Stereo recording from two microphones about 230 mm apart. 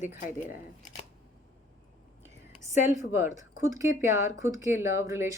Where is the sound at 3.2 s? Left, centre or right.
Centre.